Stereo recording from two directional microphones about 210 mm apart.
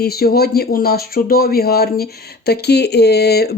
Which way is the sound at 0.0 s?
45° left (ahead or behind).